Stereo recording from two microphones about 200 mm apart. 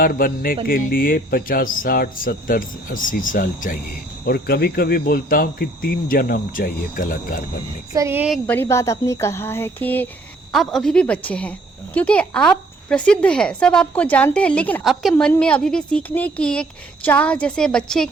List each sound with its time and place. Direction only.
0.0 s speech: 45° left (ahead or behind)
7.9 s speech: 10° right (ahead or behind)
8.4 s speech: 10° left (ahead or behind)